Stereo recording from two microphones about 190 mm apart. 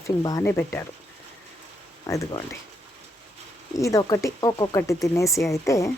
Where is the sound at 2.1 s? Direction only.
15° left (ahead or behind).